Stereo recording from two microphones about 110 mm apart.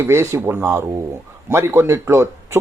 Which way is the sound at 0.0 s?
25° right (ahead or behind).